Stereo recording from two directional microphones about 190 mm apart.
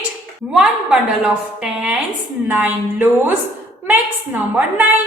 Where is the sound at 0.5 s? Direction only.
5° right (ahead or behind).